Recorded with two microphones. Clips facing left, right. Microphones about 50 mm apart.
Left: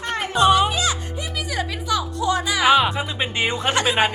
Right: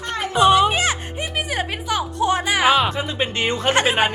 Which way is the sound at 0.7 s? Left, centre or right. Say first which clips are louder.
Right 2 dB; right.